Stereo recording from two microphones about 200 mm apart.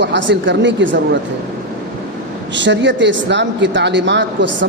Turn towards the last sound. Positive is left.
turn(degrees=-60)  # may be behind; listen again after turning